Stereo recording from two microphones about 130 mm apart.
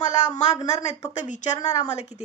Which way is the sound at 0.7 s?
60° left (ahead or behind).